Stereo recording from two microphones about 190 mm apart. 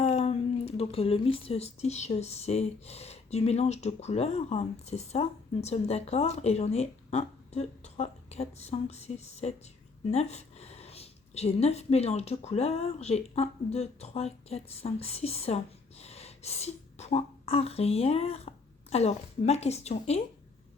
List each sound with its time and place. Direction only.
0.0 s speech: 35° left (ahead or behind)